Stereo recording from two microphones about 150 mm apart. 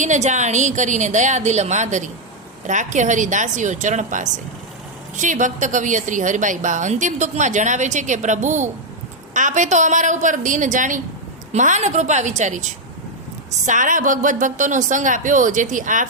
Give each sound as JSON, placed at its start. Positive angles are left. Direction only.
{"t": 0.0, "sound": "a woman's voice", "side_deg": -55}
{"t": 13.7, "sound": "a woman's voice", "side_deg": -60}